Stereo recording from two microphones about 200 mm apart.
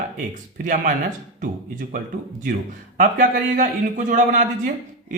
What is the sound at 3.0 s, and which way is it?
Speech, 40° right (ahead or behind).